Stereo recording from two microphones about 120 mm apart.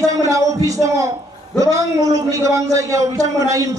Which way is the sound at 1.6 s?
25° right (ahead or behind).